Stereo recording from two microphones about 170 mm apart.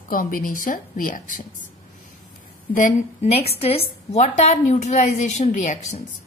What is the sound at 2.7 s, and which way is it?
A woman's voice, 45° left (ahead or behind).